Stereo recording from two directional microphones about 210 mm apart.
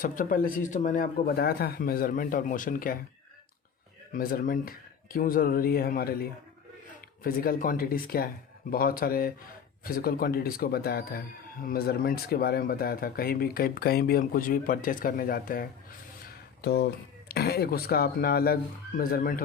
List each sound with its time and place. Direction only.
0.0 s speech: 40° left (ahead or behind)
4.1 s speech: 40° left (ahead or behind)
7.3 s speech: 45° left (ahead or behind)